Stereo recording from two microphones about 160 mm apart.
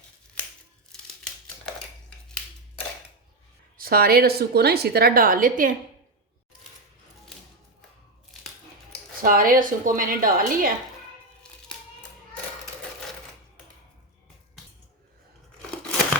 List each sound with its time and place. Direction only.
0.4 s scissors: 10° left (ahead or behind)
3.8 s a woman's voice: 70° right (ahead or behind)
9.2 s a woman's voice: 60° right (ahead or behind)